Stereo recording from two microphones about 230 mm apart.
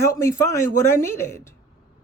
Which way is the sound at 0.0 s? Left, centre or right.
Centre.